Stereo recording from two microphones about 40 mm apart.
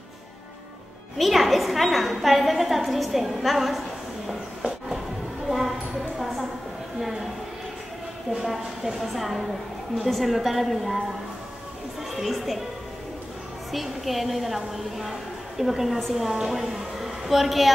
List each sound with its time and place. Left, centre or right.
1.1 s a woman's voice: centre
5.5 s a sound: centre
8.5 s a woman's voice: centre
12.2 s a woman's voice: centre
13.7 s a woman's voice: centre